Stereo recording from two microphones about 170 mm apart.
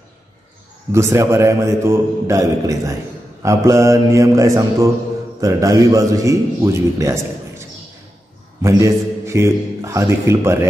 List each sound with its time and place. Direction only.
0.9 s a man's voice: 15° right (ahead or behind)
8.6 s a man's voice: 15° right (ahead or behind)